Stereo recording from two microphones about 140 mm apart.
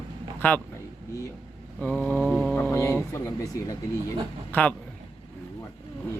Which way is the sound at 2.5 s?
15° left (ahead or behind).